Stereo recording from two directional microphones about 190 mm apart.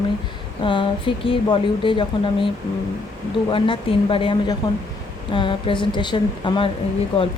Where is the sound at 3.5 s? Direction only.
30° left (ahead or behind).